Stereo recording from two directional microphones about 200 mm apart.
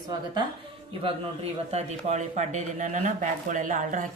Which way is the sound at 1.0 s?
30° right (ahead or behind).